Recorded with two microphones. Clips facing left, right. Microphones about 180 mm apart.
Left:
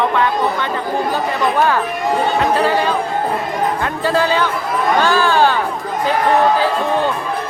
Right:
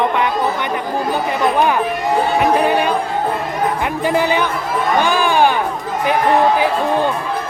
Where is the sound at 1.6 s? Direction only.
15° right (ahead or behind).